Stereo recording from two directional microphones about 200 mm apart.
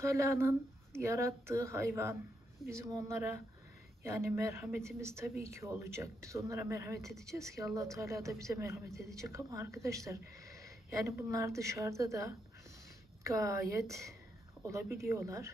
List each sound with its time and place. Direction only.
0.2 s a woman's voice: 15° right (ahead or behind)